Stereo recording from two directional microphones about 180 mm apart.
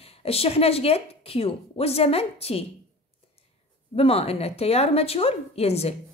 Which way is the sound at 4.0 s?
35° left (ahead or behind).